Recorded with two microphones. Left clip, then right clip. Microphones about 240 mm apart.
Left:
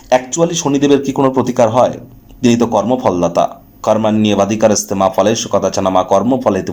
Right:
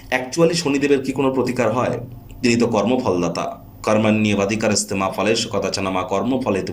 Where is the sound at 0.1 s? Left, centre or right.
Left.